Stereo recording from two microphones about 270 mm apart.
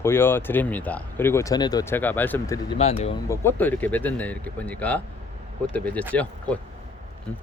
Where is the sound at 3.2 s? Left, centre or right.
Centre.